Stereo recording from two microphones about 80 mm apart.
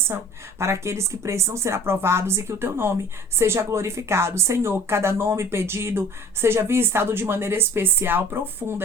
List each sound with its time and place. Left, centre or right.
0.6 s speech: right